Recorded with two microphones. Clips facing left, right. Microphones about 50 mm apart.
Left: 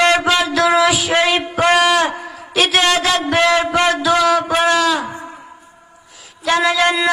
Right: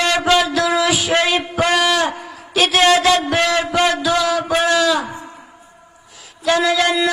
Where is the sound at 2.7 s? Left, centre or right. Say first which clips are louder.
Right 4 dB; centre.